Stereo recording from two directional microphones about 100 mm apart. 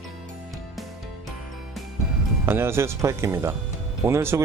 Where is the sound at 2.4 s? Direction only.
25° right (ahead or behind).